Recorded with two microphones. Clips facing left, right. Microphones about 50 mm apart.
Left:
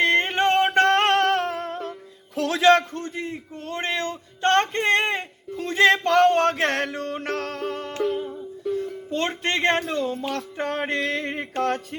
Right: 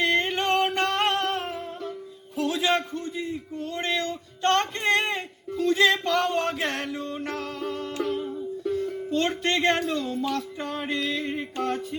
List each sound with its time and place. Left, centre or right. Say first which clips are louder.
0.0 s music: left 4 dB; left
0.6 s a sound: left 6 dB; left
0.9 s music: left 6 dB; left
2.3 s a man's voice: left 7 dB; left
8.7 s music: left 2 dB; centre
9.0 s speech: even; left
9.9 s music: left 1 dB; left